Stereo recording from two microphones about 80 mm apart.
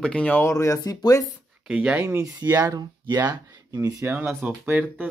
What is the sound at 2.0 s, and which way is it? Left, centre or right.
Speech, right.